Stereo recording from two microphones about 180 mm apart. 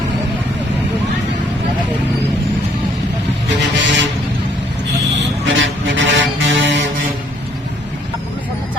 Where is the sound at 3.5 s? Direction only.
85° right.